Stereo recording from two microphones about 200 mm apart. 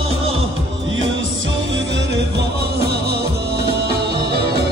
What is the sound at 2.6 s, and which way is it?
Music, 50° right (ahead or behind).